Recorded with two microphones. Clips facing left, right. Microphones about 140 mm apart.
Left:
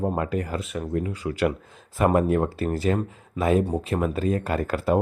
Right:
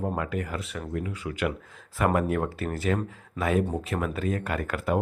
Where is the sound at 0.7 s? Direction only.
20° left (ahead or behind).